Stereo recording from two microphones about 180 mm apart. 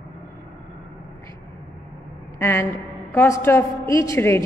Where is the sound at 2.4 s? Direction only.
15° left (ahead or behind).